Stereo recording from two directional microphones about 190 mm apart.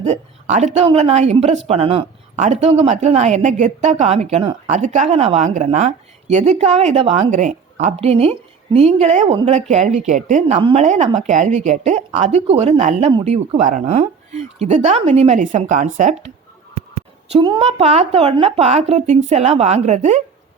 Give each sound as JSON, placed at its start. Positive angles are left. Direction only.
{"t": 0.0, "sound": "speech", "side_deg": -35}
{"t": 17.3, "sound": "speech", "side_deg": -30}